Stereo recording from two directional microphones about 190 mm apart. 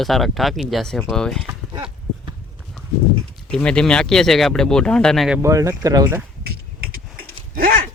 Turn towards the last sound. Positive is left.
turn(degrees=-45)  # may be behind; listen again after turning